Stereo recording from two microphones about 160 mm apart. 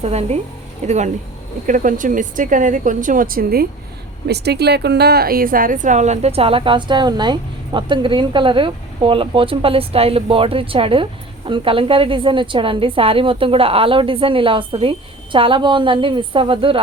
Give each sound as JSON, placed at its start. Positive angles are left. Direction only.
{"t": 0.0, "sound": "a woman's voice", "side_deg": -40}
{"t": 4.3, "sound": "a woman's voice", "side_deg": -90}